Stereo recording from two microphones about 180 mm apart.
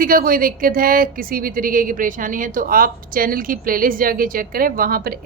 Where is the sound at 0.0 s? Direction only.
55° right (ahead or behind).